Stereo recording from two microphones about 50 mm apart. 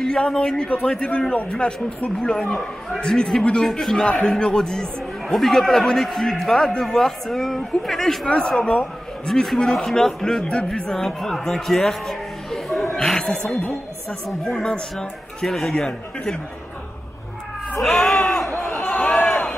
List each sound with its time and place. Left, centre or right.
0.0 s a man's voice: centre
8.3 s speech: centre
9.3 s a man's voice: centre
12.9 s a sound: centre
14.4 s a man's voice: centre
17.8 s speech: centre
18.1 s crowd: centre
19.1 s crowd: centre